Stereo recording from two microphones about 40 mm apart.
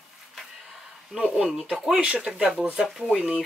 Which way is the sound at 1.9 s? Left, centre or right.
Right.